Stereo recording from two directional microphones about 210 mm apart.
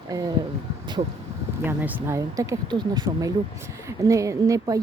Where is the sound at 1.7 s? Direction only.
10° right (ahead or behind).